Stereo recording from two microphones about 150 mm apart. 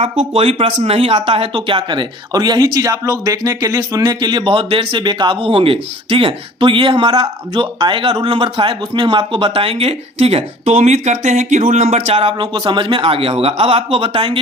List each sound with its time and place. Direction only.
0.3 s speech: 40° right (ahead or behind)
12.1 s speech: 35° right (ahead or behind)